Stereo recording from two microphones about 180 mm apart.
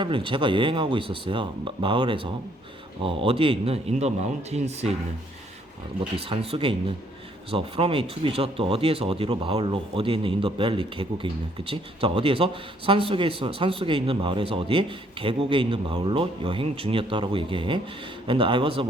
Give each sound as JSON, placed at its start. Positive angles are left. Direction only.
{"t": 0.0, "sound": "speech", "side_deg": -30}
{"t": 6.2, "sound": "speech", "side_deg": -30}